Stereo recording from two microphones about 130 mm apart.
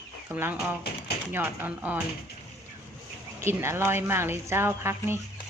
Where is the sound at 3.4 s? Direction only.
20° right (ahead or behind).